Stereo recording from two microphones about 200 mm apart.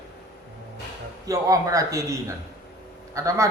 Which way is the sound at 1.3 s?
15° right (ahead or behind).